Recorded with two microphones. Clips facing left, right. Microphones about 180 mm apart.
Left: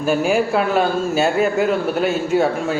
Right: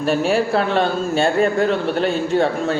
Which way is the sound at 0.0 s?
5° left (ahead or behind).